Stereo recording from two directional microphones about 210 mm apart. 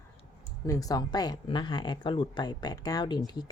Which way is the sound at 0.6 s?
15° left (ahead or behind).